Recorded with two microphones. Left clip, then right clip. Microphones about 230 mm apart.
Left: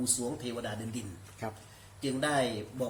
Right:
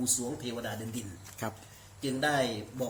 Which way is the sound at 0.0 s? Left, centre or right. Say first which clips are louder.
Right 1 dB; centre.